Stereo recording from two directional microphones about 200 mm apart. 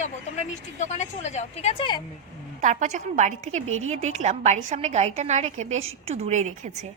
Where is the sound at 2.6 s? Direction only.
35° right (ahead or behind).